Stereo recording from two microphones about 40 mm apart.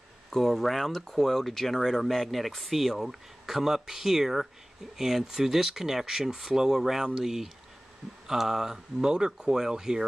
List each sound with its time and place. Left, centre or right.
0.3 s speech: centre